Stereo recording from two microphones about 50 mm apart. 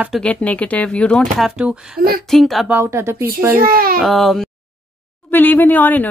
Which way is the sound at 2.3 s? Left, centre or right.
Centre.